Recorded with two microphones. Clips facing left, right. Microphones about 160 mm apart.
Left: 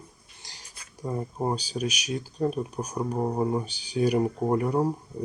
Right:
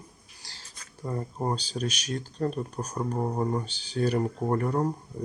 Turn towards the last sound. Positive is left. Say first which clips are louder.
# left 2 dB
turn(degrees=10)  # may be behind; listen again after turning